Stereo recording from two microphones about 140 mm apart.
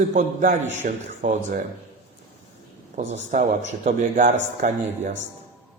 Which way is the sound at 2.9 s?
60° right (ahead or behind).